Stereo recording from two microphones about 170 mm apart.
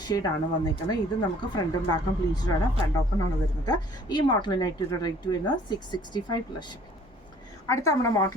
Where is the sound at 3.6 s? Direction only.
25° left (ahead or behind).